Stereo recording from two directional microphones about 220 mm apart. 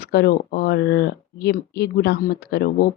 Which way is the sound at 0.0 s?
45° left (ahead or behind).